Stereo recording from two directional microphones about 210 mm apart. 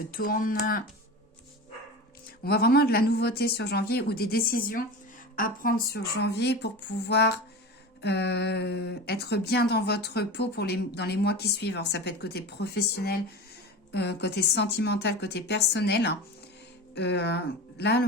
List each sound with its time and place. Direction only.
0.1 s speech: 45° left (ahead or behind)
2.4 s speech: 45° left (ahead or behind)